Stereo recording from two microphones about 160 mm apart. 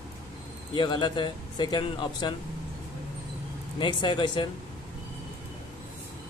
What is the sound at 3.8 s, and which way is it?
Speech, 30° left (ahead or behind).